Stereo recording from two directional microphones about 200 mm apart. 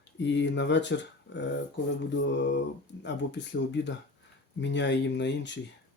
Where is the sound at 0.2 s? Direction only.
60° left (ahead or behind).